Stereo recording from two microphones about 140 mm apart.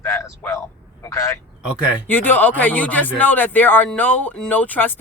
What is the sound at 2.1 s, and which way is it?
Speech, 15° left (ahead or behind).